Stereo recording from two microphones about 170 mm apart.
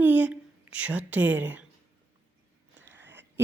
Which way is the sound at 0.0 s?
10° right (ahead or behind).